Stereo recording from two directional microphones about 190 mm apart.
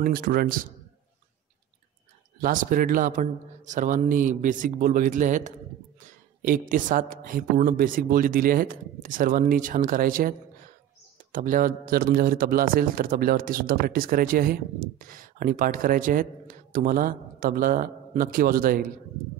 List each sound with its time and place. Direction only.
0.0 s a man's voice: 50° right (ahead or behind)
2.4 s a man's voice: 45° right (ahead or behind)
11.3 s a man's voice: 45° right (ahead or behind)